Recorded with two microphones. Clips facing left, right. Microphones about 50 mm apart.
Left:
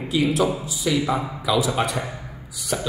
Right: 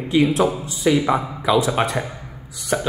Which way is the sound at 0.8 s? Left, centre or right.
Right.